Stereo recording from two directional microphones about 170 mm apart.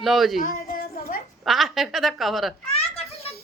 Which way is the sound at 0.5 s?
55° left (ahead or behind).